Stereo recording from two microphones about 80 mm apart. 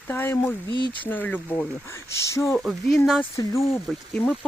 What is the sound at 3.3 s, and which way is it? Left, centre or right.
Speech, left.